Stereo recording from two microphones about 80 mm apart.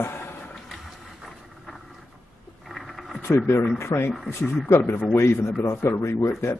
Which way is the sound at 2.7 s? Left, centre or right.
Centre.